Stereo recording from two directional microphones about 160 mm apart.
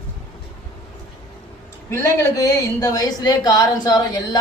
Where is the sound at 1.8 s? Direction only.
20° left (ahead or behind).